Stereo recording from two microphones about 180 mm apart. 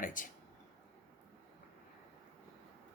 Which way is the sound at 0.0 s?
45° left (ahead or behind).